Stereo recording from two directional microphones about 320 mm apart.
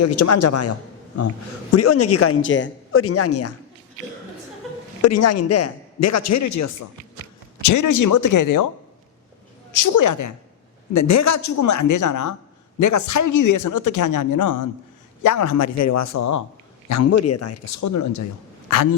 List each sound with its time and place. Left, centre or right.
0.0 s speech: left
1.7 s speech: left
5.0 s speech: left
9.7 s speech: left
15.2 s speech: left
18.7 s speech: left